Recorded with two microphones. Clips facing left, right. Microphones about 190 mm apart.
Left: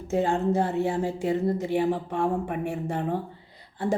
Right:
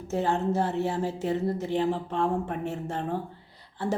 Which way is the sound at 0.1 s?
15° left (ahead or behind).